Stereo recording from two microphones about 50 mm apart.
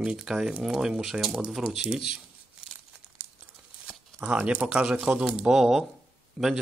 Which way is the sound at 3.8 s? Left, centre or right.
Right.